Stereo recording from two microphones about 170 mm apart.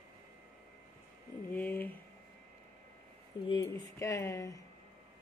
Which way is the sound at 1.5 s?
10° left (ahead or behind).